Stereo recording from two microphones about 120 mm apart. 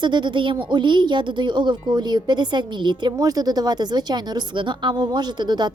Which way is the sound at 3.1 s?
30° right (ahead or behind).